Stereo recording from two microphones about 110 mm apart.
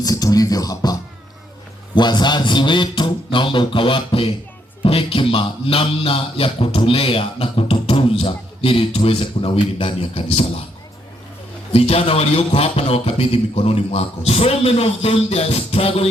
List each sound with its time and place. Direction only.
0.0 s music: 35° left (ahead or behind)
2.0 s a man's voice: 45° left (ahead or behind)
4.8 s music: 55° left (ahead or behind)
11.7 s music: 65° left (ahead or behind)